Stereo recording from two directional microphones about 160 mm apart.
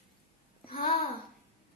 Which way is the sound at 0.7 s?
60° left (ahead or behind).